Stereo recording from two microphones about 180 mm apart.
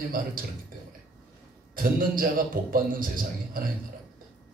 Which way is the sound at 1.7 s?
50° right (ahead or behind).